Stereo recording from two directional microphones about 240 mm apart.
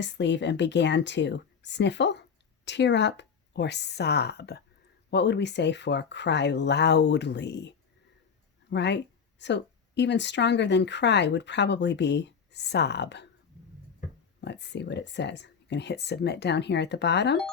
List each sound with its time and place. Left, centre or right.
0.0 s speech: left
8.7 s speech: left
14.4 s speech: left